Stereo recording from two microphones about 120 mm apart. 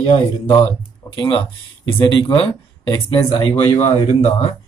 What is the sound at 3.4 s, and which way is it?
Speech, 60° left (ahead or behind).